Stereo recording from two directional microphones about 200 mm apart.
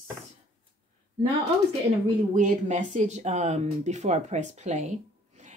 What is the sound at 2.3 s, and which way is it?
A woman's voice, 40° right (ahead or behind).